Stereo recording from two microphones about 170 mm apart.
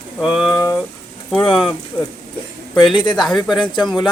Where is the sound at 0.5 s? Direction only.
25° left (ahead or behind).